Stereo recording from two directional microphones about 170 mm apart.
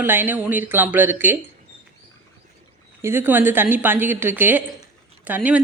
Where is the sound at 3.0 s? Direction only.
15° right (ahead or behind).